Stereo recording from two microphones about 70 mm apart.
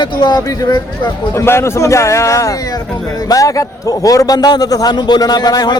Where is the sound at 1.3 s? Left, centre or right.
Left.